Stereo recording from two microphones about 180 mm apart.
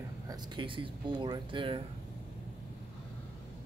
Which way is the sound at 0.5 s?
30° right (ahead or behind).